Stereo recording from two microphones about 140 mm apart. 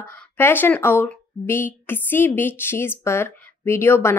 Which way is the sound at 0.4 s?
15° left (ahead or behind).